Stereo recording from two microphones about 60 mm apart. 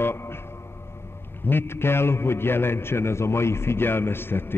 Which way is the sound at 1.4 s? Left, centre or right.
Left.